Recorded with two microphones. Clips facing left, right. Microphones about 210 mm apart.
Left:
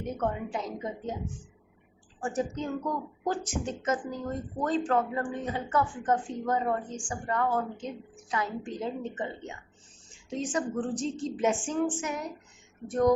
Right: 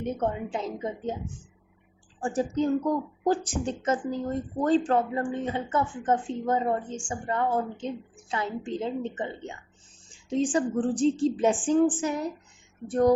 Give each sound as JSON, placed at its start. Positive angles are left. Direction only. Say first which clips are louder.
{"t": 0.0, "sound": "a woman's voice", "louder": "right 3 dB", "side_deg": -25}
{"t": 2.2, "sound": "a woman's voice", "louder": "right 5 dB", "side_deg": -30}